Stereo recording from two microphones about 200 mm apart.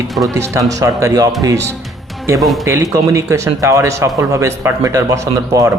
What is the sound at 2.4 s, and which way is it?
Speech, centre (ahead or behind).